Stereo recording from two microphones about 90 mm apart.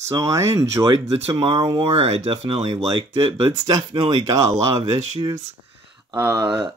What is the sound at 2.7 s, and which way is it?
Speech, 50° right (ahead or behind).